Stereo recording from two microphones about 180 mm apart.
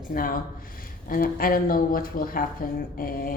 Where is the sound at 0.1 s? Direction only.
50° left (ahead or behind).